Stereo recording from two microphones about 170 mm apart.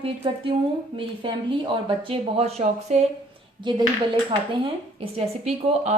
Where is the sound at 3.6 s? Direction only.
25° right (ahead or behind).